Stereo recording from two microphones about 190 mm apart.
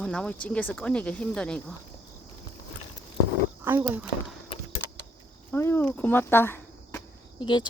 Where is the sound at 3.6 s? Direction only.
10° right (ahead or behind).